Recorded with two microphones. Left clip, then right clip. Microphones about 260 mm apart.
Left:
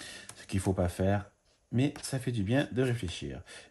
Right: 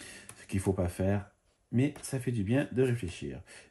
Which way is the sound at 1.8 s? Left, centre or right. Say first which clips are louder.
Even; left.